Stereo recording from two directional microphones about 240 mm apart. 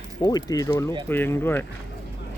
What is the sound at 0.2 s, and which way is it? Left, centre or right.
Speech, centre.